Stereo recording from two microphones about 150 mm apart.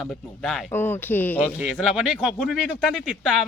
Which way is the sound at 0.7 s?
15° left (ahead or behind).